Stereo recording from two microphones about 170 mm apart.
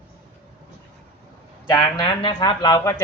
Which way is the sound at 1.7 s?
25° left (ahead or behind).